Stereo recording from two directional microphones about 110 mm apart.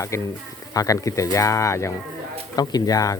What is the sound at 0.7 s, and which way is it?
Speech, 30° left (ahead or behind).